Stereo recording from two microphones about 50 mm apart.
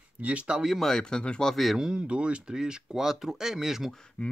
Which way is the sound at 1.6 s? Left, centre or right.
Centre.